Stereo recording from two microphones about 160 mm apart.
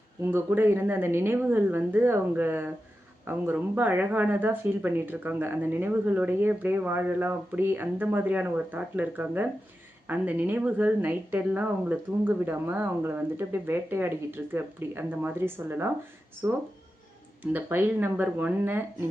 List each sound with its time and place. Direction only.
0.3 s speech: 15° right (ahead or behind)